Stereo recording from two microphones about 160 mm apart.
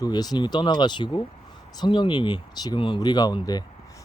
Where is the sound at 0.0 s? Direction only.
25° left (ahead or behind).